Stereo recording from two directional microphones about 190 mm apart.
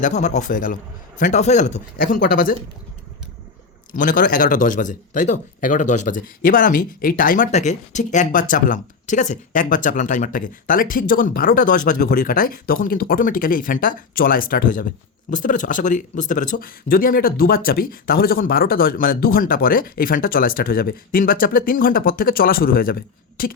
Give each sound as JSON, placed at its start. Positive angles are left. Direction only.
{"t": 0.0, "sound": "a man's voice", "side_deg": 40}
{"t": 3.9, "sound": "speech", "side_deg": 45}